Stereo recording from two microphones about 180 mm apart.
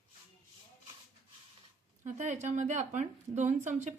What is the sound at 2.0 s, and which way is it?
Speech, 40° right (ahead or behind).